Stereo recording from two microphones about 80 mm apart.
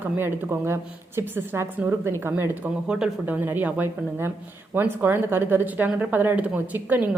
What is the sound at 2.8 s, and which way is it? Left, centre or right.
A woman's voice, centre.